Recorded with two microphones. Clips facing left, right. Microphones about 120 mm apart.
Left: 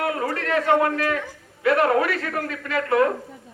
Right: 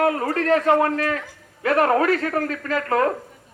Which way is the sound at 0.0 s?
40° right (ahead or behind).